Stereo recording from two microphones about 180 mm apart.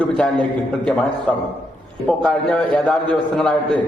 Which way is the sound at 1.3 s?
5° left (ahead or behind).